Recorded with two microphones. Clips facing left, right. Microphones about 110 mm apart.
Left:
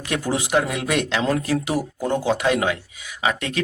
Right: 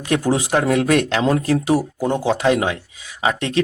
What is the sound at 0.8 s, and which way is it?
Speech, 50° right (ahead or behind).